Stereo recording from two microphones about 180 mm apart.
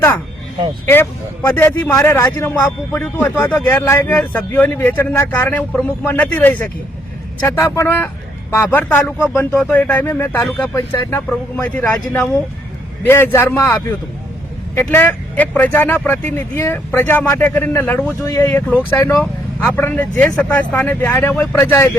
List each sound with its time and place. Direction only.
0.9 s a man's voice: 10° left (ahead or behind)
9.6 s a man's voice: 5° left (ahead or behind)
14.8 s a man's voice: 15° left (ahead or behind)